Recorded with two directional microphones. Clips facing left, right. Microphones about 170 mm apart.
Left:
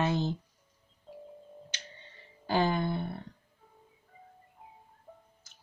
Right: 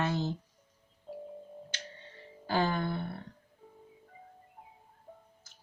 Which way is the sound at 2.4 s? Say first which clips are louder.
Left 2 dB; 20° left (ahead or behind).